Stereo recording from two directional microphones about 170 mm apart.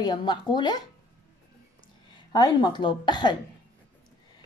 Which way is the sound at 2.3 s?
25° left (ahead or behind).